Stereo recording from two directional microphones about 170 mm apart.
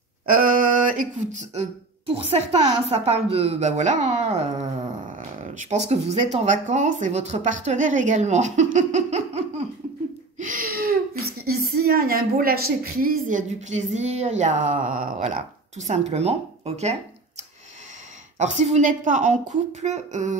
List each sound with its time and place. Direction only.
0.3 s a sound: 55° right (ahead or behind)
5.5 s speech: 45° right (ahead or behind)
10.4 s speech: 55° right (ahead or behind)
15.9 s speech: 40° right (ahead or behind)
18.4 s speech: 45° right (ahead or behind)